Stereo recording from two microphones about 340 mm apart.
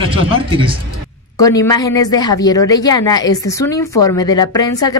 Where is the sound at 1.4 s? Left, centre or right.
Centre.